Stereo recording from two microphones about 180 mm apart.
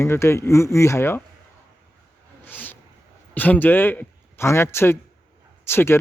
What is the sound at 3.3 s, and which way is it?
Speech, 10° left (ahead or behind).